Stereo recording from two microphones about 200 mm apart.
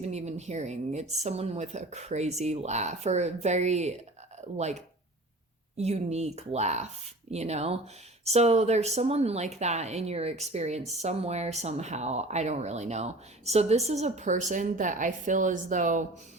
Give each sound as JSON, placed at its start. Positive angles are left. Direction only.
{"t": 0.0, "sound": "speech", "side_deg": -35}